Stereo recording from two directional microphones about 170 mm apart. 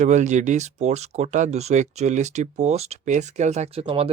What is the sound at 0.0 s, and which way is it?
Speech, 45° right (ahead or behind).